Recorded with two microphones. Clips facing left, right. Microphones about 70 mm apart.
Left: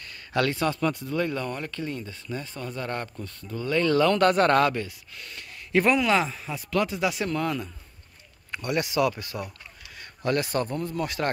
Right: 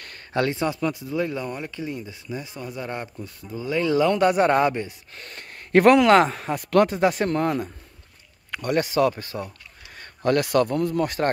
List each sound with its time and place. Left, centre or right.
0.3 s speech: right
0.7 s speech: centre; by 4.9 s right
5.1 s speech: right
9.9 s a sound: right
10.4 s speech: right